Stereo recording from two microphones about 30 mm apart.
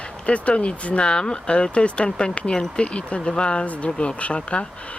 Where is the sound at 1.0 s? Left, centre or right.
Left.